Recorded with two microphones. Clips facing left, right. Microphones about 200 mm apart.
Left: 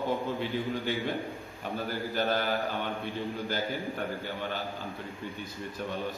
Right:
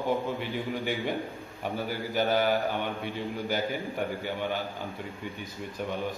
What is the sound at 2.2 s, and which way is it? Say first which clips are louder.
Speech: right 4 dB; 15° right (ahead or behind).